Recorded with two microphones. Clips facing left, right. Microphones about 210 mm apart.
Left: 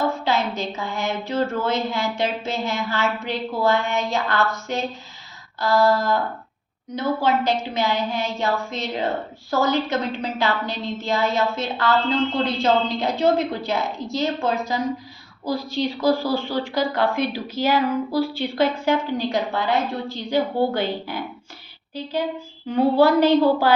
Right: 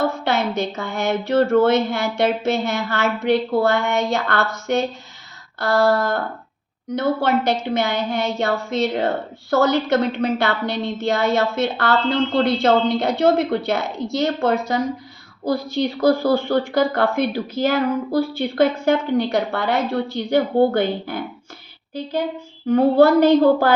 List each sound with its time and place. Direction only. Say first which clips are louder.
0.3 s a sound: right 2 dB; 70° right (ahead or behind)
1.6 s a woman's voice: right 6 dB; 70° right (ahead or behind); by 18.9 s 50° right (ahead or behind)
19.1 s a woman's voice: right 4 dB; 65° right (ahead or behind)
22.7 s a woman's voice: right 3 dB; 45° right (ahead or behind)